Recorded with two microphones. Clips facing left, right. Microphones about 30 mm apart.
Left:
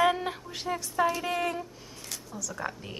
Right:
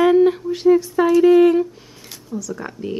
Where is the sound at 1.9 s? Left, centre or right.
Centre.